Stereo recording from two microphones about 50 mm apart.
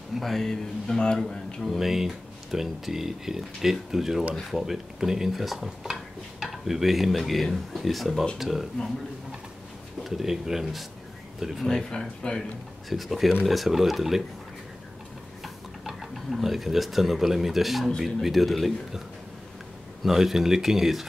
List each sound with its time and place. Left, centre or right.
0.1 s a man's voice: centre
1.6 s speech: centre
10.0 s speech: centre
11.9 s a man's voice: centre
12.9 s speech: centre
15.4 s speech: centre